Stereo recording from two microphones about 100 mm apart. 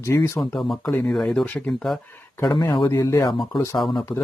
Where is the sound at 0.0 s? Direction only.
30° left (ahead or behind).